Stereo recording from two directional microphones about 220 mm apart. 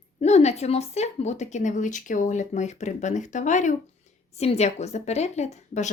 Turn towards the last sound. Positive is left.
turn(degrees=30)  # may be behind; listen again after turning